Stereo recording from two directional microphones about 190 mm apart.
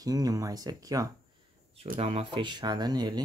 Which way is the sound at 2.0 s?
30° right (ahead or behind).